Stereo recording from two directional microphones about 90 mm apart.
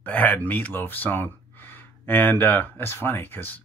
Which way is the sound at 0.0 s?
20° left (ahead or behind).